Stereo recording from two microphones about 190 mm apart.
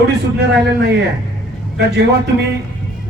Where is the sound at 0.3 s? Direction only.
60° right (ahead or behind).